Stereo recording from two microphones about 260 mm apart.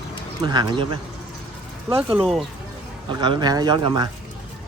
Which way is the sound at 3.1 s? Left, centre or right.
Centre.